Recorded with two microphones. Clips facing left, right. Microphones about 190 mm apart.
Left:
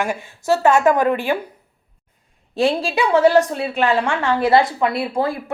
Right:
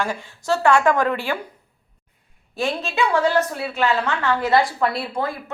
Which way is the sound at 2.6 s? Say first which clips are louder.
Left 4 dB; 30° left (ahead or behind).